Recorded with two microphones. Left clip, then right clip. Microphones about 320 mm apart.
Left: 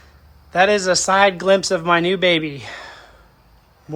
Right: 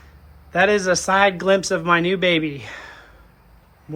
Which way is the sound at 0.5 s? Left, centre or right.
Centre.